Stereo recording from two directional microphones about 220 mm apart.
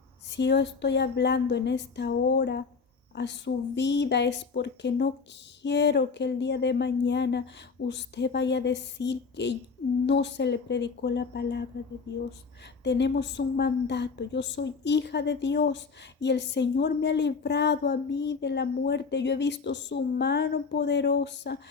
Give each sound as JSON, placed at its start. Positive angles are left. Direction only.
{"t": 0.3, "sound": "a woman's voice", "side_deg": 50}